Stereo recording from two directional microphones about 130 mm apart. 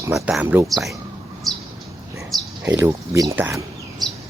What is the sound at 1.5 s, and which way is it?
Bird, centre (ahead or behind).